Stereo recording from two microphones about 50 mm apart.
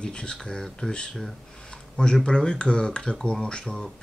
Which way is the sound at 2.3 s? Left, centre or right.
Centre.